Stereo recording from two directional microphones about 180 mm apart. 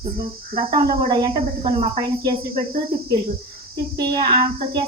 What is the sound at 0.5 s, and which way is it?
Speech, 25° right (ahead or behind).